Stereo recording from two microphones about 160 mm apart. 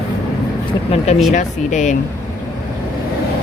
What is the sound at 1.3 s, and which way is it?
Speech, 50° left (ahead or behind).